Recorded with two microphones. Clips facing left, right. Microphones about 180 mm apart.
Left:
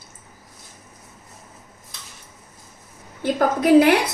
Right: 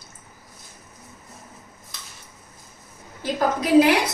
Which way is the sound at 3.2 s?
55° left (ahead or behind).